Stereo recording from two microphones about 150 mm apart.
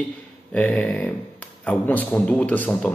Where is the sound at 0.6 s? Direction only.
10° left (ahead or behind).